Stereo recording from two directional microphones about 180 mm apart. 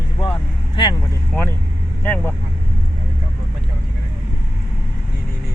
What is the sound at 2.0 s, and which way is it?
Speech, 10° left (ahead or behind).